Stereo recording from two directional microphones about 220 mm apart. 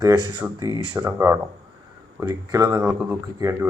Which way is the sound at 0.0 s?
20° right (ahead or behind).